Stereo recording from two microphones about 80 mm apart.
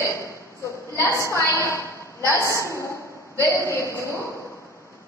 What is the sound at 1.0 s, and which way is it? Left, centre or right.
A woman's voice, left.